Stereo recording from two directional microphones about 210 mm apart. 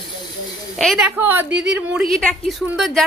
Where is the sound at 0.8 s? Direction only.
Centre (ahead or behind).